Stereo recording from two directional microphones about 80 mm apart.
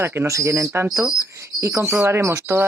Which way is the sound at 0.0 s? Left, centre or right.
Right.